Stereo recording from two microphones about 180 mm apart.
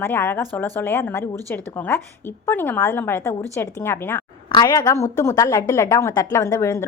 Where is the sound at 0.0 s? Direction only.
10° left (ahead or behind).